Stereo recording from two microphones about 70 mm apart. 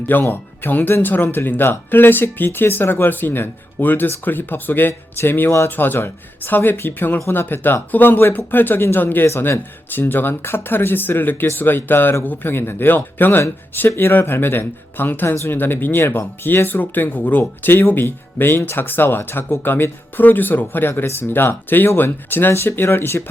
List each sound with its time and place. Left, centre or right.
0.1 s speech: left